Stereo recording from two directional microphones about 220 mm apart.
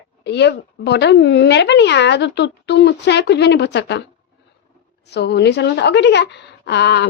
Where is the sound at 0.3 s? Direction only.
50° left (ahead or behind).